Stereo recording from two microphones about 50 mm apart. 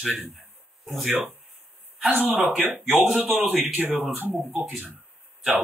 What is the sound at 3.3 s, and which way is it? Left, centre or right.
Speech, centre.